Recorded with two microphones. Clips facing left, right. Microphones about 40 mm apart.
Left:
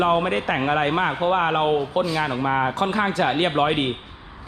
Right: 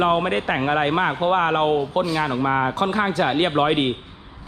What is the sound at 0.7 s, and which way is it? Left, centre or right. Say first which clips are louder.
Speech: right 1 dB; right.